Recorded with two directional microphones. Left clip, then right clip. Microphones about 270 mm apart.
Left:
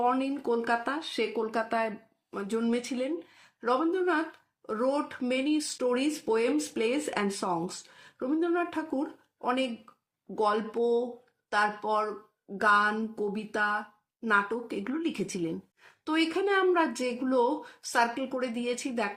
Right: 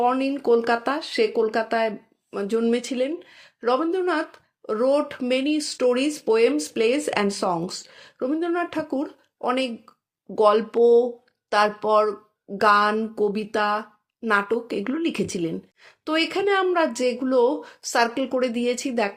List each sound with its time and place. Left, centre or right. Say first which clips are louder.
0.0 s speech: right 6 dB; right